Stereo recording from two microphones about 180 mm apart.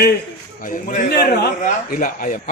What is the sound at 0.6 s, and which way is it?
A man's voice, 50° left (ahead or behind).